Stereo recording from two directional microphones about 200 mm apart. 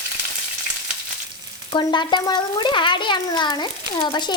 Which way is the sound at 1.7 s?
25° left (ahead or behind).